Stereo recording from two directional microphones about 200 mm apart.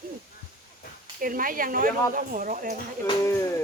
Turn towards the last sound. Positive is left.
turn(degrees=15)  # may be behind; listen again after turning